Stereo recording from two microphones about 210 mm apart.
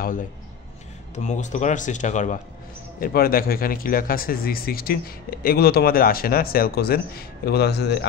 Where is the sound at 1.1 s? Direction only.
35° left (ahead or behind).